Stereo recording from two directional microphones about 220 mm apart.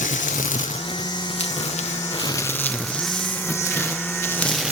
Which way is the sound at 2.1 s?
15° left (ahead or behind).